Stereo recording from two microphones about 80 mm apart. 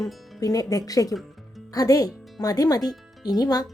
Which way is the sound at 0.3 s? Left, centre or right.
Left.